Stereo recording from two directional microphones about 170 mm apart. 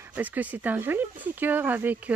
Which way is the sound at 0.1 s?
10° right (ahead or behind).